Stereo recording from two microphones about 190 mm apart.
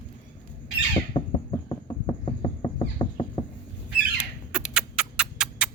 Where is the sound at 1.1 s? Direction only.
25° left (ahead or behind).